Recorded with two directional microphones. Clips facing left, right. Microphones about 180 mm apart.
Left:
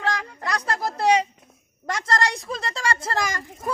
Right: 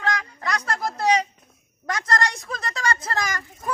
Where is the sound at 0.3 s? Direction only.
35° left (ahead or behind).